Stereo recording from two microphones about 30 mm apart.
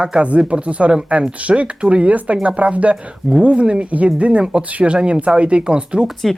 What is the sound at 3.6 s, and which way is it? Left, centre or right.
Speech, right.